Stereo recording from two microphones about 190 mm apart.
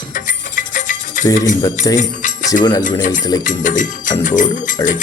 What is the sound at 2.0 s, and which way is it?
Jingle bell, 40° left (ahead or behind).